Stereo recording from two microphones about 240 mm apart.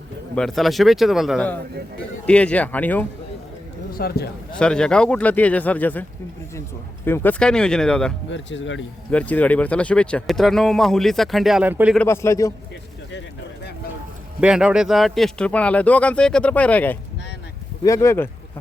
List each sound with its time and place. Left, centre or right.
0.3 s speech: centre
3.9 s speech: left
4.5 s speech: centre
8.3 s speech: left
9.0 s speech: centre
11.9 s a man's voice: centre
14.4 s a man's voice: centre